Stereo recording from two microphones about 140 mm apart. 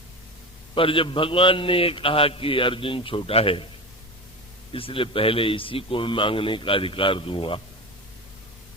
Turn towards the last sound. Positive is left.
turn(degrees=40)  # may be behind; listen again after turning